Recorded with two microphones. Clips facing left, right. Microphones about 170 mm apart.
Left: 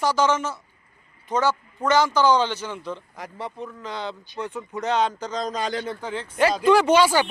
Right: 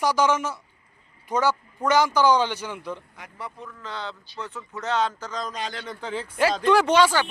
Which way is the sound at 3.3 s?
25° left (ahead or behind).